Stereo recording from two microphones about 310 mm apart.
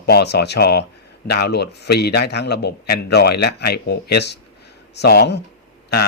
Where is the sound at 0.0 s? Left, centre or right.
Left.